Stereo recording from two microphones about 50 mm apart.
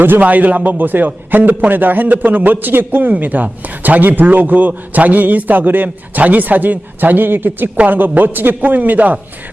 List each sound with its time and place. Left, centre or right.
0.2 s a man's voice: right